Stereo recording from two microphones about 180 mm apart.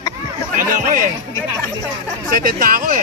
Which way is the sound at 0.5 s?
50° right (ahead or behind).